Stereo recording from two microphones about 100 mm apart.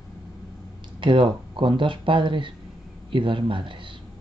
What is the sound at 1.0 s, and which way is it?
Speech, 55° right (ahead or behind).